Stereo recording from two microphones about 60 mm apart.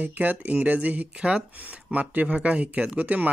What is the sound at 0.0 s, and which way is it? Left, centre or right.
Speech, right.